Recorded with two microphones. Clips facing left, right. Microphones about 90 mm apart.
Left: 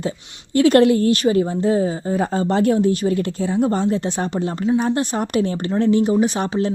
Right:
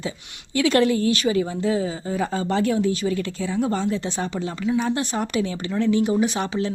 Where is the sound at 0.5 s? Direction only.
45° left (ahead or behind).